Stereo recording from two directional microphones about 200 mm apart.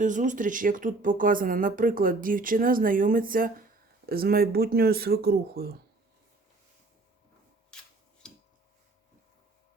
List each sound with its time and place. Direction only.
0.0 s speech: 40° right (ahead or behind)
7.7 s rub: 5° left (ahead or behind)
8.2 s a sound: 5° left (ahead or behind)